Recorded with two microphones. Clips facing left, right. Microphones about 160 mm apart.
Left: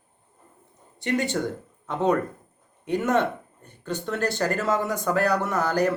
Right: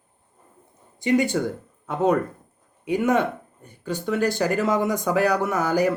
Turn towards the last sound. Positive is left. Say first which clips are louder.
# right 2 dB
turn(degrees=-10)  # may be behind; listen again after turning